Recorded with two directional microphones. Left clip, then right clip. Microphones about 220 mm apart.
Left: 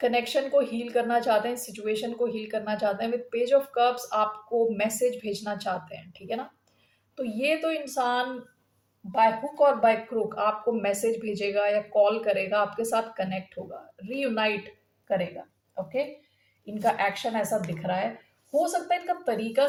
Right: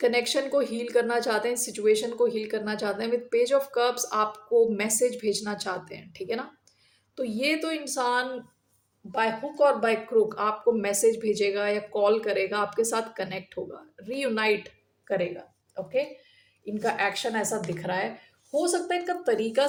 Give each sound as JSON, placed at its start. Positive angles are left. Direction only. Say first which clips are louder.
{"t": 0.0, "sound": "a woman's voice", "louder": "right 1 dB", "side_deg": -45}
{"t": 9.1, "sound": "a woman's voice", "louder": "left 3 dB", "side_deg": -40}
{"t": 15.7, "sound": "a woman's voice", "louder": "right 1 dB", "side_deg": -45}